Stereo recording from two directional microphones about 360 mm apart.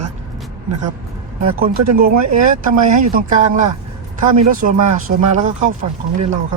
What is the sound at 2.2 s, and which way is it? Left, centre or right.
Speech, right.